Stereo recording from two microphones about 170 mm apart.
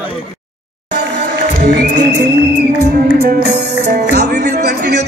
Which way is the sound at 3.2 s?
75° right (ahead or behind).